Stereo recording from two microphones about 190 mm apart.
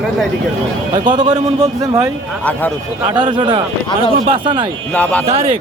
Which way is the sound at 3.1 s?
25° right (ahead or behind).